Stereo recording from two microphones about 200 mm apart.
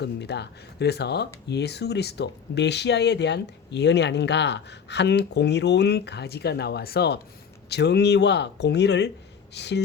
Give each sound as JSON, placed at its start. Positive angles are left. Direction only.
{"t": 0.0, "sound": "speech", "side_deg": 55}